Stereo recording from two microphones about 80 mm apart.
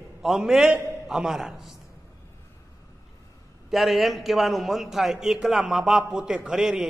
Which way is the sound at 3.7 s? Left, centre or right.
Centre.